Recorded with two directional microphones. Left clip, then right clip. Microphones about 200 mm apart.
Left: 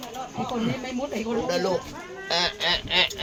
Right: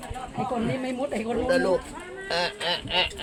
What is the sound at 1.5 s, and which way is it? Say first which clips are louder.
Duck: right 5 dB; 10° left (ahead or behind).